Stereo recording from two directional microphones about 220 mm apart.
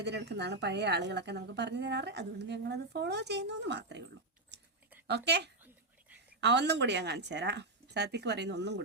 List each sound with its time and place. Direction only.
0.0 s a woman's voice: 50° right (ahead or behind)